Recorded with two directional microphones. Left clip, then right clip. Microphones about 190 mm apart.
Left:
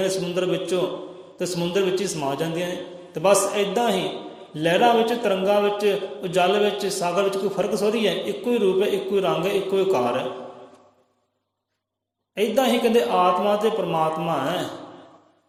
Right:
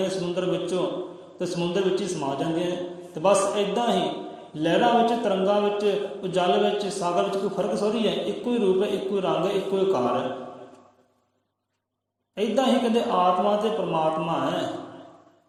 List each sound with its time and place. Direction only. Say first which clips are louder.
0.0 s a man's voice: left 3 dB; 40° left (ahead or behind)
12.3 s a man's voice: left 2 dB; 40° left (ahead or behind)